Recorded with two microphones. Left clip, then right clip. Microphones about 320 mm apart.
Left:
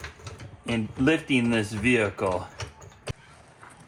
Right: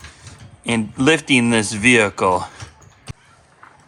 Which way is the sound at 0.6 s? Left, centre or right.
Right.